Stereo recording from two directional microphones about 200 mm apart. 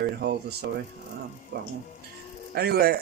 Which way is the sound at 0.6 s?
55° right (ahead or behind).